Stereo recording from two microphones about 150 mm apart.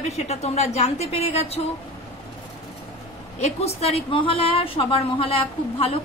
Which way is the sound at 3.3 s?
45° left (ahead or behind).